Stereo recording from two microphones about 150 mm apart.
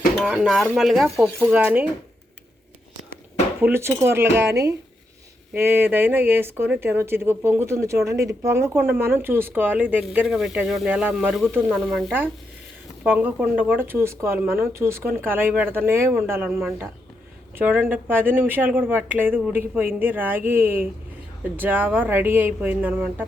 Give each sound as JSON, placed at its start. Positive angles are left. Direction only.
{"t": 0.3, "sound": "speech", "side_deg": 0}
{"t": 1.2, "sound": "speech", "side_deg": -15}
{"t": 3.6, "sound": "speech", "side_deg": -15}
{"t": 13.0, "sound": "speech", "side_deg": -10}
{"t": 17.6, "sound": "speech", "side_deg": -15}